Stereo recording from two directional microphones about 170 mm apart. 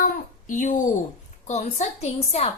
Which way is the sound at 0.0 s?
50° left (ahead or behind).